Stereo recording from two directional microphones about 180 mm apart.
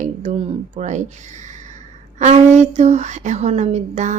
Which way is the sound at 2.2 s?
40° right (ahead or behind).